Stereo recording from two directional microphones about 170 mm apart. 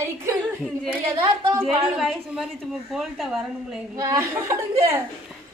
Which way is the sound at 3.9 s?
20° right (ahead or behind).